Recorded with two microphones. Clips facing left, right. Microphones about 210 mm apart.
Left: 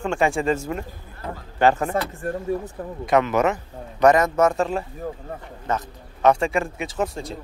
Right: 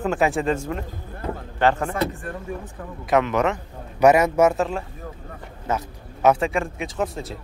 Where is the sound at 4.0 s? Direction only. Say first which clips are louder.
Right 1 dB; 10° right (ahead or behind).